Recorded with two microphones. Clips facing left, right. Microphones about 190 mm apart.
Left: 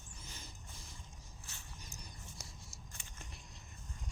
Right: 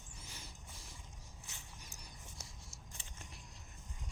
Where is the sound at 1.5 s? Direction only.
20° right (ahead or behind).